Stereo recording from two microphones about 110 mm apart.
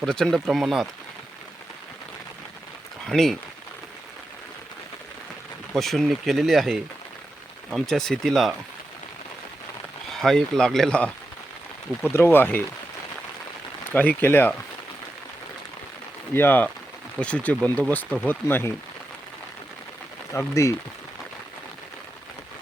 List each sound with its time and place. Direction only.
0.0 s speech: 5° left (ahead or behind)
3.1 s speech: 5° left (ahead or behind)
5.7 s speech: centre (ahead or behind)
7.9 s speech: 5° left (ahead or behind)
10.2 s speech: 5° left (ahead or behind)
12.1 s speech: 20° left (ahead or behind)
13.9 s speech: 15° left (ahead or behind)
16.3 s speech: 20° left (ahead or behind)
20.5 s speech: 25° left (ahead or behind)